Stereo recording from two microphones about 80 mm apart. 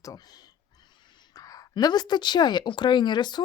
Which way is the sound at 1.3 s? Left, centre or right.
Left.